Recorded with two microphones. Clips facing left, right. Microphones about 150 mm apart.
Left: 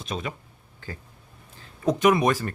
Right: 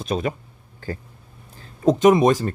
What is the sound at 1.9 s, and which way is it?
Speech, 25° right (ahead or behind).